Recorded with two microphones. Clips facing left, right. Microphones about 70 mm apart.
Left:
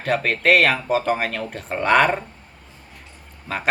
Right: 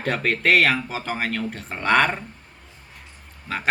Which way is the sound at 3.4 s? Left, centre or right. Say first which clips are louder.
Left 2 dB; centre.